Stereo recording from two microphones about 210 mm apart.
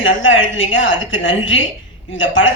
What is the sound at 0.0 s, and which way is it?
A woman's voice, 65° left (ahead or behind).